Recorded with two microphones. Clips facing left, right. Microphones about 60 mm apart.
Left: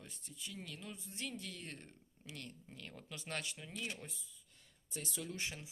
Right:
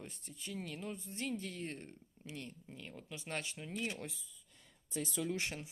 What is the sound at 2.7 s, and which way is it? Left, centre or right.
Speech, centre.